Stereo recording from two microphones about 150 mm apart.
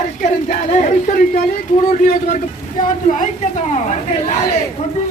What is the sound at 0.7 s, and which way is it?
A man's voice, 55° left (ahead or behind).